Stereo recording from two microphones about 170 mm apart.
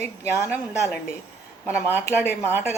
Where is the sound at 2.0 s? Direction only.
15° left (ahead or behind).